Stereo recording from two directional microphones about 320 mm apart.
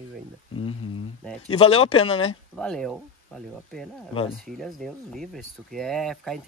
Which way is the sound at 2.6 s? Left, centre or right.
Centre.